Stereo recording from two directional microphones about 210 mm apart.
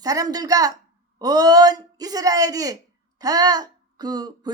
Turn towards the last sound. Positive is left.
turn(degrees=-20)  # may be behind; listen again after turning